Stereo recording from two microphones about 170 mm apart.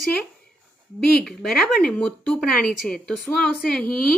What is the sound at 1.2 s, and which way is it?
Speech, centre (ahead or behind).